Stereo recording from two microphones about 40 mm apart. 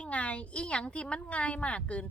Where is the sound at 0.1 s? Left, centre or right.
Left.